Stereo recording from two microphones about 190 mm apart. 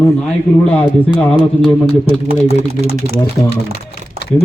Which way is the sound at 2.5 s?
35° right (ahead or behind).